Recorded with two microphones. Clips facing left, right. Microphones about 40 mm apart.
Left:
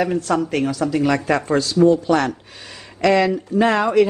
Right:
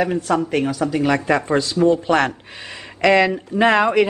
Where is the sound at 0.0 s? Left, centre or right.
Right.